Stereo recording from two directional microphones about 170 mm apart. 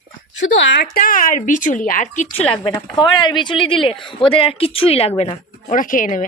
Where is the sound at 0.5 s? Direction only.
90° left; by 2.5 s 40° left (ahead or behind).